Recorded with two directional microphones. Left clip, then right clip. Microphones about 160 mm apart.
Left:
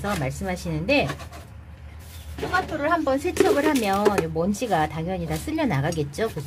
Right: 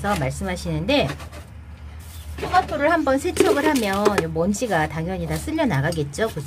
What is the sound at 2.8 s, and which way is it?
Speech, 35° right (ahead or behind).